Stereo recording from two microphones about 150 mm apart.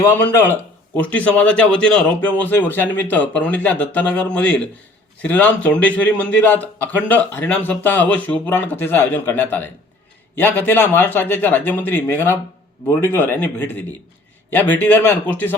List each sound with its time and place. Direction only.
0.0 s speech: 15° left (ahead or behind)